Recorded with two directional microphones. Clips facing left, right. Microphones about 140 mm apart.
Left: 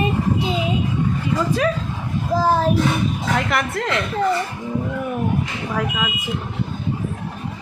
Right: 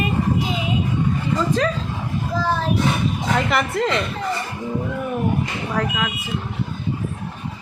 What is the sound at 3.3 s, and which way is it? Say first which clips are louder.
Speech: right 3 dB; centre (ahead or behind).